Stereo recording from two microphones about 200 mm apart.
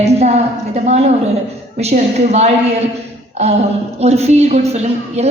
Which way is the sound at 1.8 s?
35° right (ahead or behind).